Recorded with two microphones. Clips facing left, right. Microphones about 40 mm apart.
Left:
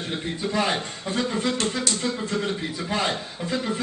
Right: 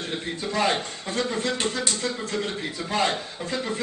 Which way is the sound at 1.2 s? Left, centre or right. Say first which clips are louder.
Left 1 dB; centre.